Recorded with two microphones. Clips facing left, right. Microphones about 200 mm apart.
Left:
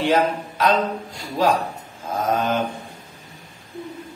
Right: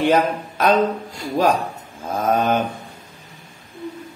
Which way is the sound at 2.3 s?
50° right (ahead or behind).